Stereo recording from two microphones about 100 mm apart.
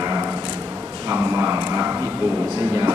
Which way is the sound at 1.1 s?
25° right (ahead or behind).